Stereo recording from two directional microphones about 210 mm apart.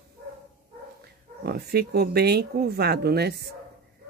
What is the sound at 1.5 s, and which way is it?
Speech, 50° right (ahead or behind).